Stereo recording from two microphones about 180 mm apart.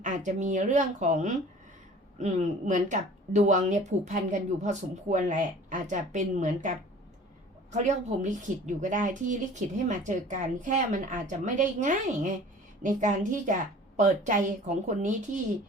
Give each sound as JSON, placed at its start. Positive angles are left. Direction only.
{"t": 0.0, "sound": "speech", "side_deg": -45}